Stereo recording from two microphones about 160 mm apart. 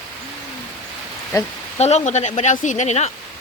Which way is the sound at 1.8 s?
45° left (ahead or behind).